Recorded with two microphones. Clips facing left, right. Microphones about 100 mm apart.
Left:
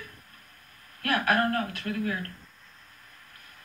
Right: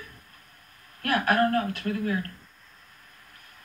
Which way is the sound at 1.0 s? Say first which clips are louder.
Right 2 dB; 35° right (ahead or behind).